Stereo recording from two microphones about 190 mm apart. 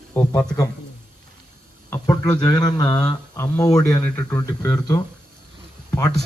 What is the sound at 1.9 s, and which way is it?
Speech, 15° left (ahead or behind).